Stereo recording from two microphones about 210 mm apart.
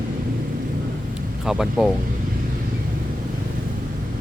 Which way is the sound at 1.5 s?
5° right (ahead or behind).